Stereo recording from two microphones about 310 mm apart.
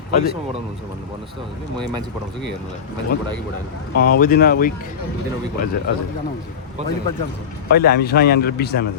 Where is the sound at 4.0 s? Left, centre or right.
Left.